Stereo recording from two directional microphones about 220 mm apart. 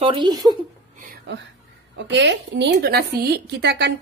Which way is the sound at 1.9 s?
55° right (ahead or behind).